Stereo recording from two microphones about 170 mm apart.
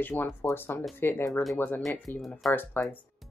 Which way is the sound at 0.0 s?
10° left (ahead or behind).